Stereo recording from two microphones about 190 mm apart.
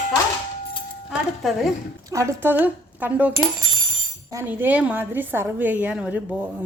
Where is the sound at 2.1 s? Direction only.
15° right (ahead or behind).